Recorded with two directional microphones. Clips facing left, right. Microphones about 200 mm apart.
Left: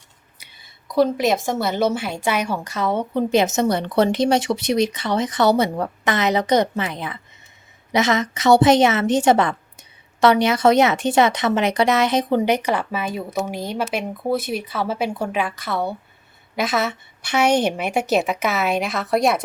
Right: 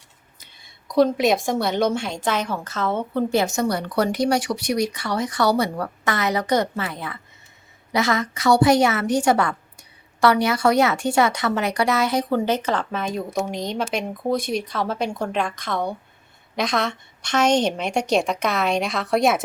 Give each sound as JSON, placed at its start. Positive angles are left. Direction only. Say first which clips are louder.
{"t": 0.3, "sound": "a woman's voice", "louder": "left 1 dB", "side_deg": 5}